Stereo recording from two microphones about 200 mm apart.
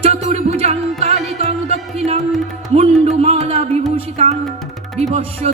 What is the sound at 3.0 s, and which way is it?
Music, 30° right (ahead or behind).